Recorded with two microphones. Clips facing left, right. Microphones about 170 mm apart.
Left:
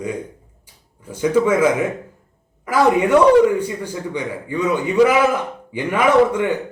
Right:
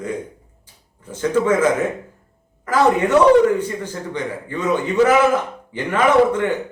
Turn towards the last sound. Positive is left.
turn(degrees=10)  # may be behind; listen again after turning